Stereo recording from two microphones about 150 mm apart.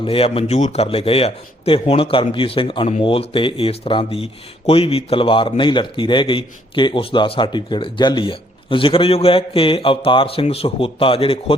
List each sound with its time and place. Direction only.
0.0 s a man's voice: 40° left (ahead or behind)